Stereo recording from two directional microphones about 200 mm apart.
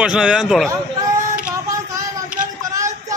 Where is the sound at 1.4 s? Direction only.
15° right (ahead or behind).